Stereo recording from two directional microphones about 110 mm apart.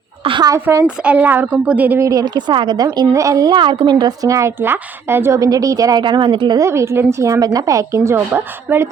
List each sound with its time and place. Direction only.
0.3 s a woman's voice: 45° right (ahead or behind)
0.6 s a woman's voice: 25° right (ahead or behind)
0.9 s a woman's voice: 10° right (ahead or behind)
2.0 s a woman's voice: 30° right (ahead or behind)
6.6 s a woman's voice: 25° right (ahead or behind)